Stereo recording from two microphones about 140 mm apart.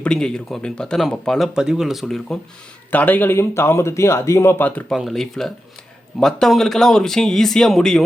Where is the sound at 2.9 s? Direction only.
10° left (ahead or behind).